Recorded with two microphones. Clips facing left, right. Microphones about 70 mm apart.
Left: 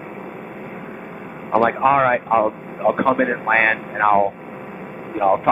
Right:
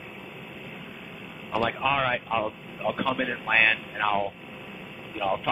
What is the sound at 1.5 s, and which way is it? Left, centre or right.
A man's voice, left.